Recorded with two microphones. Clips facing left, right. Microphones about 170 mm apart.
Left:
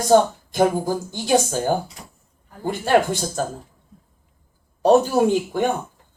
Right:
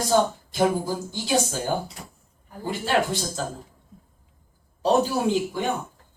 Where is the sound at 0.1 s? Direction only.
50° left (ahead or behind).